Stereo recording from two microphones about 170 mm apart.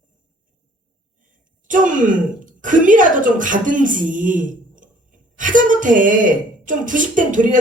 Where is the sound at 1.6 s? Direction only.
50° right (ahead or behind).